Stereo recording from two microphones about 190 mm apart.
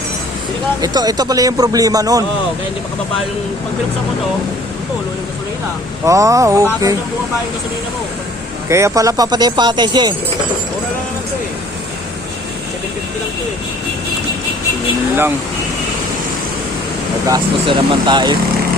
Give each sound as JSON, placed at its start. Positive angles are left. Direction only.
{"t": 0.8, "sound": "speech", "side_deg": -20}
{"t": 6.1, "sound": "speech", "side_deg": -15}
{"t": 8.7, "sound": "speech", "side_deg": -15}
{"t": 17.2, "sound": "speech", "side_deg": -20}